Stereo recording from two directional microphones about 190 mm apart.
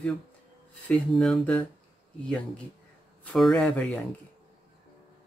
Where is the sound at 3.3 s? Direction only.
5° left (ahead or behind).